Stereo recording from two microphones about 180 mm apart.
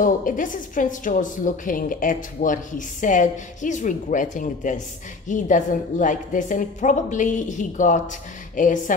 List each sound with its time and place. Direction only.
0.0 s a woman's voice: 50° left (ahead or behind)